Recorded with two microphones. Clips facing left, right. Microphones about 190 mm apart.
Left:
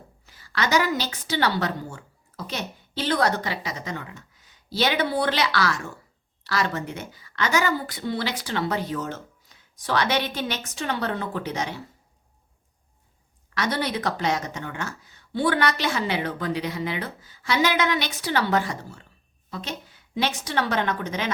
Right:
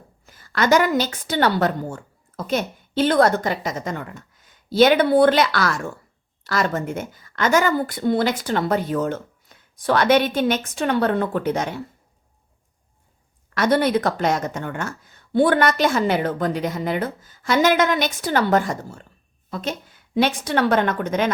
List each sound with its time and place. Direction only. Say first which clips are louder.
0.3 s a woman's voice: right 7 dB; 50° right (ahead or behind)
13.5 s speech: right 8 dB; 55° right (ahead or behind)